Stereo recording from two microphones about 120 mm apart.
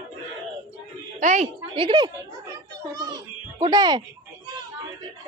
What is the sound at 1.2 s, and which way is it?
Speech, 90° right.